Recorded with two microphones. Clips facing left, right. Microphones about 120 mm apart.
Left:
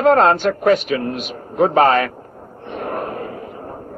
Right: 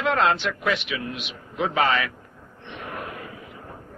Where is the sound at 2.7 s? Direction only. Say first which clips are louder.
Left 10 dB; 45° left (ahead or behind).